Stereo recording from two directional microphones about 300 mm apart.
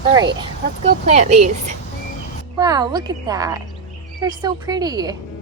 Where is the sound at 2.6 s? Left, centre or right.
Centre.